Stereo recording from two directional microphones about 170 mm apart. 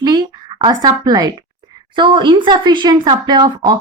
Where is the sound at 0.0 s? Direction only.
25° right (ahead or behind).